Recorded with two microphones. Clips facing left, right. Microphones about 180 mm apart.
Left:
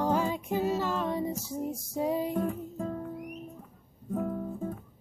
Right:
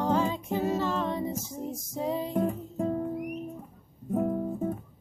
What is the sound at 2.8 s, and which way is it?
Music, 25° right (ahead or behind).